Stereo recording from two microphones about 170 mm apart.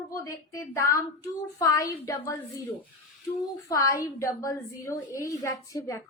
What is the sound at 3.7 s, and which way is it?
A woman's voice, 20° left (ahead or behind).